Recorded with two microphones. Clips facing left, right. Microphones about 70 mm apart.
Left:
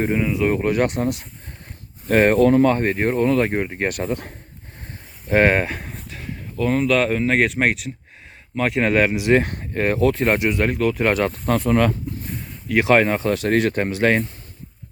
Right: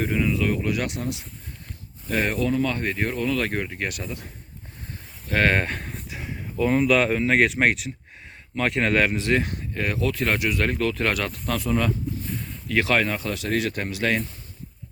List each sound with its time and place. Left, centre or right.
0.0 s speech: left
0.5 s speech: left
3.4 s speech: left
3.8 s speech: left
5.3 s speech: left
5.5 s speech: centre
6.1 s speech: centre
9.4 s speech: left
10.7 s speech: centre
11.1 s speech: left
11.7 s speech: left
12.6 s speech: centre
12.9 s speech: left